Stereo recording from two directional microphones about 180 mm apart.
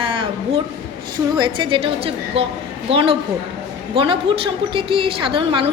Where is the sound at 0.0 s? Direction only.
30° right (ahead or behind).